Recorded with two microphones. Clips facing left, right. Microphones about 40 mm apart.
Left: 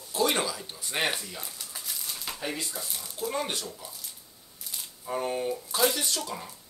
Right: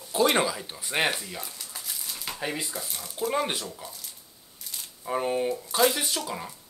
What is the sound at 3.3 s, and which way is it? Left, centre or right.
Speech, centre.